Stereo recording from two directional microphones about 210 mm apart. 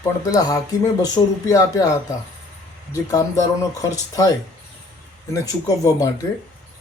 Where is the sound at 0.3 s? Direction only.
15° left (ahead or behind).